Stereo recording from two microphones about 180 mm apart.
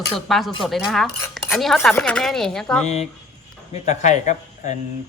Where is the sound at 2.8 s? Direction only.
40° left (ahead or behind).